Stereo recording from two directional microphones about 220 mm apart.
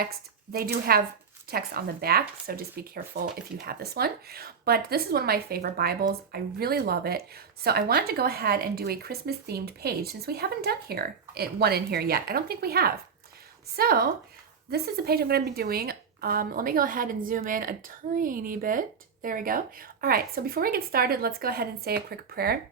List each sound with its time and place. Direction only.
0.5 s speech: 45° right (ahead or behind)